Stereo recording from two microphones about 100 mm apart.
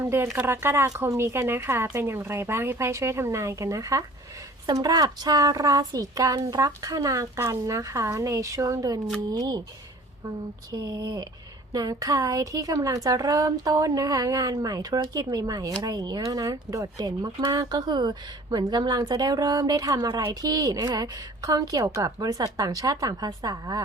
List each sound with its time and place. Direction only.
0.0 s speech: 25° right (ahead or behind)